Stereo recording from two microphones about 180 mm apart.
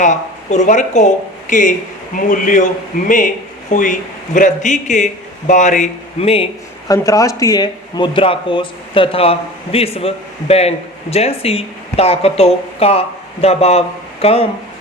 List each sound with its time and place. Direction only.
0.0 s a man's voice: 40° left (ahead or behind)
6.8 s speech: 20° left (ahead or behind); by 14.4 s 35° left (ahead or behind)